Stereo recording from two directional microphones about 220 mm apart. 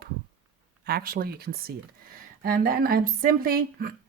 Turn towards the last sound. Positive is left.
turn(degrees=-40)  # may be behind; listen again after turning